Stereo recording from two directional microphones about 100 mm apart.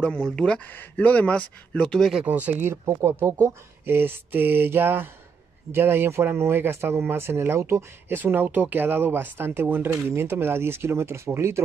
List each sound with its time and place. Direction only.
0.0 s speech: 10° left (ahead or behind)
2.2 s speech: 15° right (ahead or behind)